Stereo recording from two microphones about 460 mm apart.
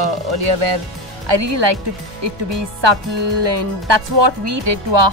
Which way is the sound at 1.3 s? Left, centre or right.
Right.